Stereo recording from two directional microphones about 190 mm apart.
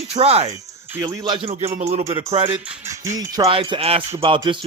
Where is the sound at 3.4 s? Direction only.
30° right (ahead or behind).